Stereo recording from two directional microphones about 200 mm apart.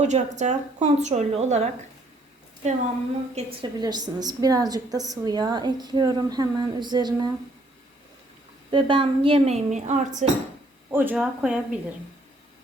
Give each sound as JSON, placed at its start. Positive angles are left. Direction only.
{"t": 0.0, "sound": "a woman's voice", "side_deg": -35}
{"t": 3.3, "sound": "a woman's voice", "side_deg": -20}
{"t": 8.7, "sound": "a woman's voice", "side_deg": -25}
{"t": 10.9, "sound": "speech", "side_deg": -10}